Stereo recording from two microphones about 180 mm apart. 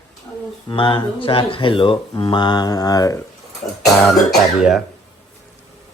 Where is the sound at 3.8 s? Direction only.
Centre (ahead or behind).